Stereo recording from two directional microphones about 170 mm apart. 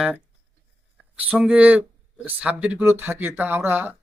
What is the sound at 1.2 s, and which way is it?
Speech, 5° right (ahead or behind).